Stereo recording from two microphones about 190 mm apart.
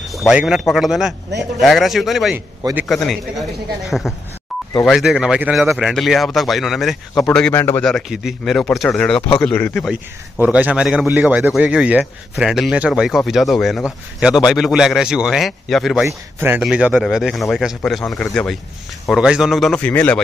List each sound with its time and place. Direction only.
0.1 s a man's voice: centre (ahead or behind)
7.8 s speech: centre (ahead or behind)